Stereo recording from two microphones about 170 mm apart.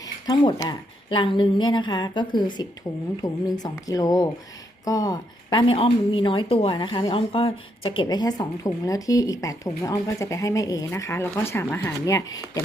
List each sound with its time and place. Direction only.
0.0 s a woman's voice: 20° left (ahead or behind)